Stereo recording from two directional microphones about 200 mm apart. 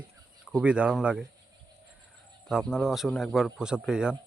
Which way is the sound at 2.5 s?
Centre (ahead or behind).